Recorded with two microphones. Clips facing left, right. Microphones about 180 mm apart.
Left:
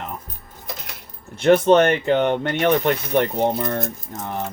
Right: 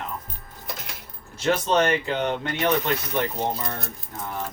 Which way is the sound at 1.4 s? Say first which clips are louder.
Left 8 dB; 60° left (ahead or behind).